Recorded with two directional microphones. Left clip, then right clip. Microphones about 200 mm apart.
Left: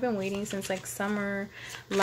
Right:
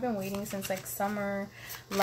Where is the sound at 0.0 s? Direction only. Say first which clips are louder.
Left 3 dB; 50° left (ahead or behind).